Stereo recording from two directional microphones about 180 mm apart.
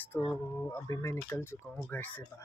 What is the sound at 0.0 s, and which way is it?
Speech, 10° left (ahead or behind).